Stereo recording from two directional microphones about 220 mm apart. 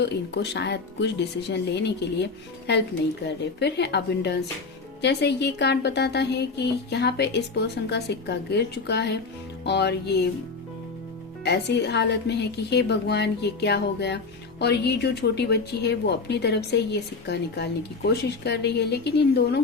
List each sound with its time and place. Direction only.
0.0 s a woman's voice: 50° left (ahead or behind)
3.2 s a woman's voice: 50° left (ahead or behind)
11.4 s a woman's voice: 50° left (ahead or behind)